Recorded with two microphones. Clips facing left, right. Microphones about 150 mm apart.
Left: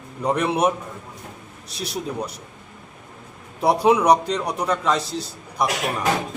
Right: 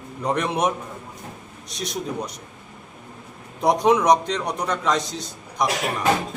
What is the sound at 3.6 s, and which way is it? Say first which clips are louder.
A man's voice: left 1 dB; 10° left (ahead or behind).